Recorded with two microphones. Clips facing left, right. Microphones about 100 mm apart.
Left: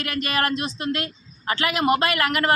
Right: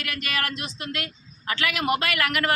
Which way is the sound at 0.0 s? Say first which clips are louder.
Left 5 dB; 30° left (ahead or behind).